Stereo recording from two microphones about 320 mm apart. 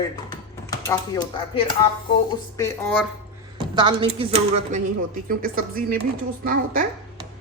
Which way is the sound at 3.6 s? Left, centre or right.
Centre.